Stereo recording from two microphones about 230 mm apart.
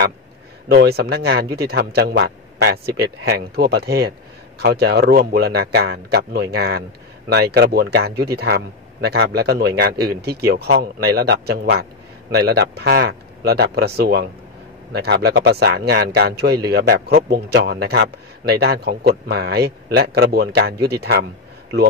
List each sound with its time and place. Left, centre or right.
0.7 s speech: right